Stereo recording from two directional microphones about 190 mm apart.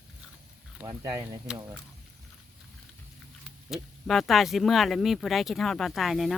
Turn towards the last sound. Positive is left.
turn(degrees=0)  # may be behind; listen again after turning